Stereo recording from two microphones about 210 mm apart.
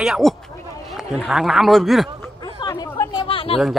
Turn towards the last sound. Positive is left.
turn(degrees=25)  # may be behind; listen again after turning